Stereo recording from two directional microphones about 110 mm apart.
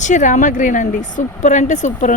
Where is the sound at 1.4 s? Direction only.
90° left.